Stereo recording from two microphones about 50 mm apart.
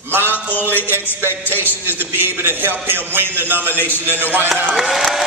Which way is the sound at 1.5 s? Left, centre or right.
Right.